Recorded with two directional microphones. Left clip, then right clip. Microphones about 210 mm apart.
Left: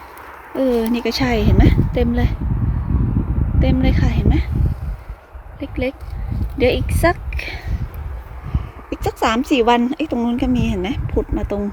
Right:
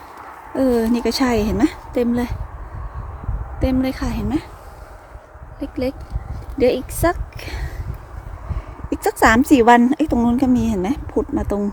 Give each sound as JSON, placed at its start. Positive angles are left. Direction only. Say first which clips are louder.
{"t": 0.5, "sound": "speech", "louder": "even", "side_deg": -10}
{"t": 3.6, "sound": "speech", "louder": "even", "side_deg": -10}
{"t": 5.5, "sound": "a woman's voice", "louder": "left 1 dB", "side_deg": -5}
{"t": 8.9, "sound": "a woman's voice", "louder": "right 4 dB", "side_deg": -30}